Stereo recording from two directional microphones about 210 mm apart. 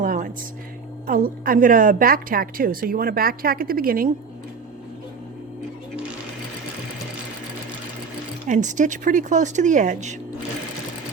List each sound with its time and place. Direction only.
0.0 s a sound: 40° right (ahead or behind)
1.0 s a woman's voice: 45° right (ahead or behind)
8.4 s speech: 35° right (ahead or behind)